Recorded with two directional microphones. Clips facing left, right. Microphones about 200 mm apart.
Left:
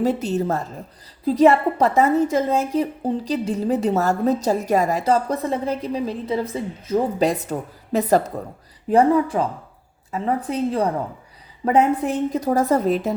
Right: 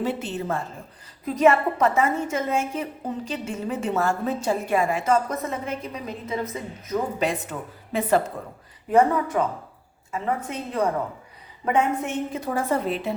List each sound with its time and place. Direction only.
0.0 s a woman's voice: 40° left (ahead or behind)